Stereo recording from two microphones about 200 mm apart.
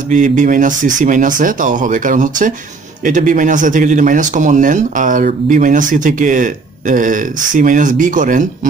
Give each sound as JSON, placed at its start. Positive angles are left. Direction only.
{"t": 0.1, "sound": "speech", "side_deg": -40}